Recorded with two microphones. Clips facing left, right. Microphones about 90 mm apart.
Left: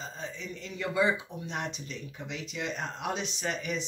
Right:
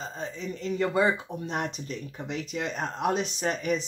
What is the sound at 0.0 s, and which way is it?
Speech, 40° right (ahead or behind).